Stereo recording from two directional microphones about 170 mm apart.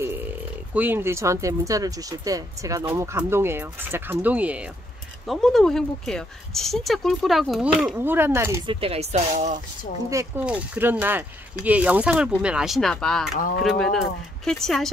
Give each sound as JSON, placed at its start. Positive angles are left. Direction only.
{"t": 0.7, "sound": "speech", "side_deg": -10}
{"t": 8.6, "sound": "speech", "side_deg": -35}
{"t": 10.0, "sound": "speech", "side_deg": -20}
{"t": 10.4, "sound": "speech", "side_deg": -10}